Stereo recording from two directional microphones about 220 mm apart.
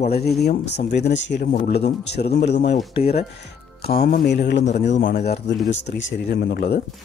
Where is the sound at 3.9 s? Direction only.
45° left (ahead or behind).